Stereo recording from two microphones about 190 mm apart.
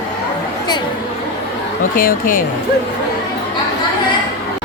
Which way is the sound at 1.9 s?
45° left (ahead or behind).